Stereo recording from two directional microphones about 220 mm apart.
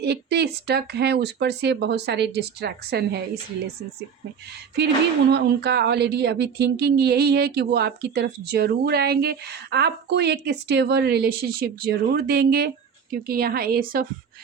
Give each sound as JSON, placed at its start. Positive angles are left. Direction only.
{"t": 0.0, "sound": "speech", "side_deg": -50}
{"t": 5.3, "sound": "speech", "side_deg": -50}